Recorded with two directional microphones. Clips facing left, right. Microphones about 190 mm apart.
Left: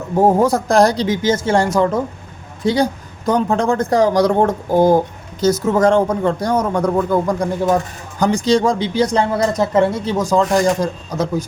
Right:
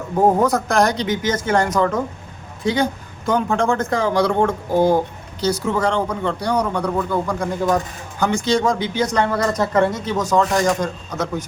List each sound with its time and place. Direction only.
0.2 s a man's voice: 30° left (ahead or behind)
3.2 s a man's voice: 35° left (ahead or behind)